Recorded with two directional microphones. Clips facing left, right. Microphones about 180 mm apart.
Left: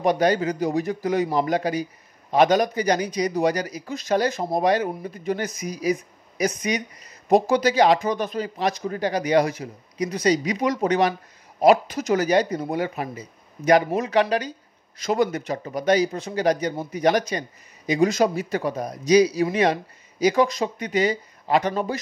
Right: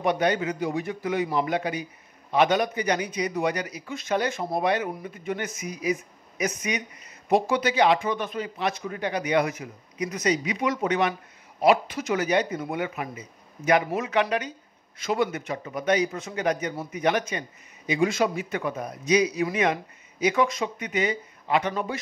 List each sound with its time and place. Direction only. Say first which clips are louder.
0.0 s speech: left 4 dB; 40° left (ahead or behind)